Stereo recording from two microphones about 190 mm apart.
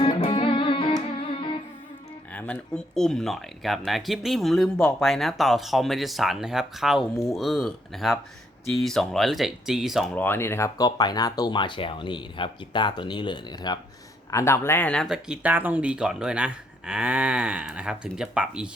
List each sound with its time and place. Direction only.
0.0 s music: 25° left (ahead or behind)
2.3 s speech: 5° left (ahead or behind)
10.2 s speech: 10° left (ahead or behind); by 18.7 s 5° right (ahead or behind)